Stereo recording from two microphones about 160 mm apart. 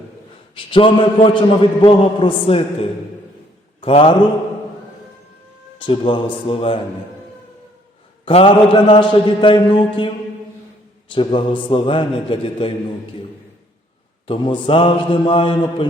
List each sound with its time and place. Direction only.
0.5 s a man's voice: 30° left (ahead or behind)
3.8 s a man's voice: 35° left (ahead or behind)
5.8 s a man's voice: 30° left (ahead or behind)
8.2 s a man's voice: 35° left (ahead or behind)
11.1 s a man's voice: 30° left (ahead or behind)
14.3 s a man's voice: 30° left (ahead or behind)